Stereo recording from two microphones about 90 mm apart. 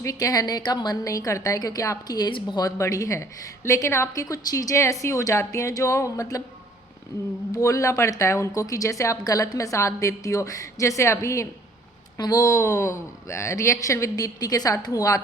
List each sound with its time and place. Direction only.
0.0 s a woman's voice: 40° left (ahead or behind)
7.5 s a woman's voice: 35° left (ahead or behind)